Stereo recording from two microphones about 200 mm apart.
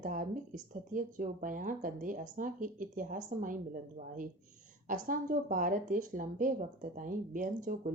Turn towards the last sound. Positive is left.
turn(degrees=-40)  # may be behind; listen again after turning